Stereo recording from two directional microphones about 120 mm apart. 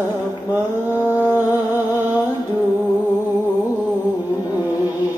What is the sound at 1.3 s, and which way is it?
Music, 15° right (ahead or behind).